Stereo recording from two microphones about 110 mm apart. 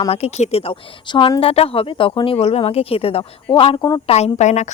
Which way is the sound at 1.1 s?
50° left (ahead or behind).